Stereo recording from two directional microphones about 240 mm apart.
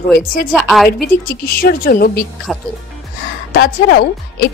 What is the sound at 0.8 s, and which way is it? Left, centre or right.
Speech, left.